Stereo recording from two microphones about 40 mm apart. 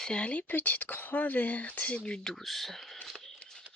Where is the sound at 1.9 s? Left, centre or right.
Left.